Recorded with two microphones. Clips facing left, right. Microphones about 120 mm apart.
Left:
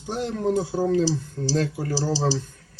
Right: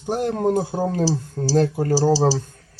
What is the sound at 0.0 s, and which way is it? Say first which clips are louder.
Speech: right 5 dB; 50° right (ahead or behind).